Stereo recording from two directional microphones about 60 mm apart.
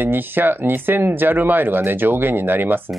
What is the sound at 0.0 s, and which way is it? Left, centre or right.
Speech, right.